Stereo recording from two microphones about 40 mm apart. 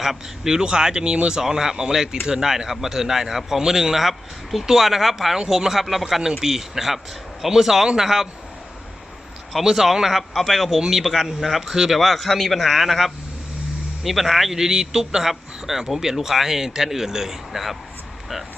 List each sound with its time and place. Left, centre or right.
0.0 s speech: centre
9.5 s speech: centre
10.8 s speech: centre
11.0 s speech: centre
14.5 s speech: centre